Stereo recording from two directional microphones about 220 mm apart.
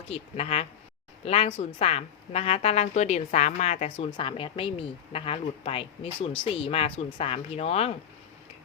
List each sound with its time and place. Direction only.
0.1 s a woman's voice: 25° left (ahead or behind)